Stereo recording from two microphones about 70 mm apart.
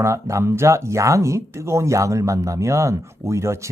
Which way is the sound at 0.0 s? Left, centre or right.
Right.